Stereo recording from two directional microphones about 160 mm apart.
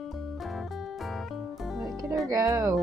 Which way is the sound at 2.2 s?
20° right (ahead or behind).